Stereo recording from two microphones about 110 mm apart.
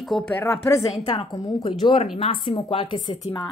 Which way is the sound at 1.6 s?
55° left (ahead or behind).